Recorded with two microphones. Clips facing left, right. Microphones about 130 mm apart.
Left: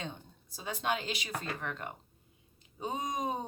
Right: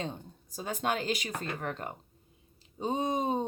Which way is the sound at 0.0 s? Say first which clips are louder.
Right 5 dB; 40° right (ahead or behind).